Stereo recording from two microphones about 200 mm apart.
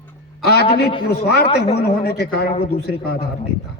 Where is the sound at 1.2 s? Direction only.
55° left (ahead or behind).